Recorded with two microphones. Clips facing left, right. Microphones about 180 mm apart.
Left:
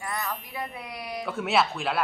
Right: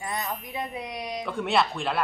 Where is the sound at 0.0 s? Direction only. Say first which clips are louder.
Right 1 dB; 20° right (ahead or behind).